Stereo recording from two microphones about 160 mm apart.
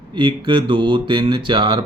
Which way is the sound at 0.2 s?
30° right (ahead or behind).